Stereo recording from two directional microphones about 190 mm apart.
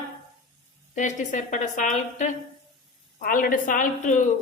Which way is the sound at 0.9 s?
40° left (ahead or behind).